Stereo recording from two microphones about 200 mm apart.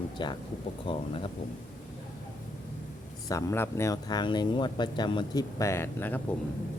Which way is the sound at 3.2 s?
15° left (ahead or behind).